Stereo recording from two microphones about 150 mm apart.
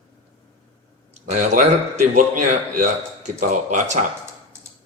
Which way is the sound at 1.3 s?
55° right (ahead or behind).